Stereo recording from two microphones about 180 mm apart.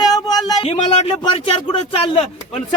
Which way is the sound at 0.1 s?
20° left (ahead or behind).